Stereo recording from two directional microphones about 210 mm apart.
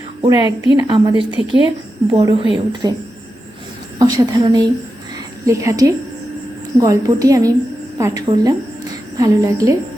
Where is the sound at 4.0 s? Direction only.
20° right (ahead or behind).